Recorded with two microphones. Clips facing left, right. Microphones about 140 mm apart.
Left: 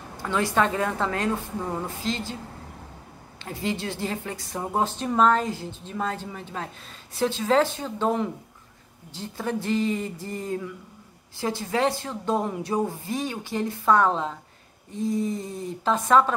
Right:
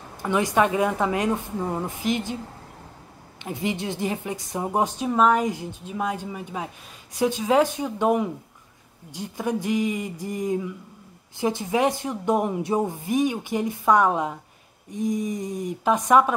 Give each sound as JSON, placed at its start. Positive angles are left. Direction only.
{"t": 0.2, "sound": "a woman's voice", "side_deg": -15}
{"t": 3.3, "sound": "a woman's voice", "side_deg": -20}